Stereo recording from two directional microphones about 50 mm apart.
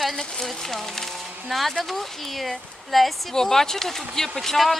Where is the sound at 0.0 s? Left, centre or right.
Centre.